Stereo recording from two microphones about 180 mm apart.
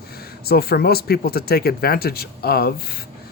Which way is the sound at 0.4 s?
60° left (ahead or behind).